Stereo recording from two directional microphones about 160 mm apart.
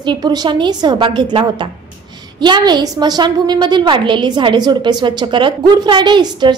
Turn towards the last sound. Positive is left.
turn(degrees=-30)  # may be behind; listen again after turning